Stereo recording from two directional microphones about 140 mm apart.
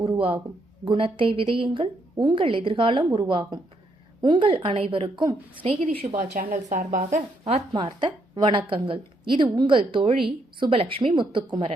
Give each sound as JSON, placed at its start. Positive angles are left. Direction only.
{"t": 0.0, "sound": "a sound", "side_deg": -35}
{"t": 0.9, "sound": "a woman's voice", "side_deg": -40}
{"t": 6.1, "sound": "speech", "side_deg": -75}
{"t": 7.7, "sound": "a woman's voice", "side_deg": -35}